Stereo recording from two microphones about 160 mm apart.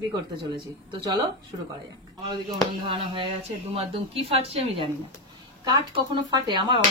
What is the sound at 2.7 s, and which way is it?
A woman's voice, 30° right (ahead or behind).